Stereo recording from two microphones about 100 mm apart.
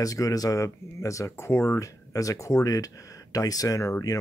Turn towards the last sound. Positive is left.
turn(degrees=30)  # may be behind; listen again after turning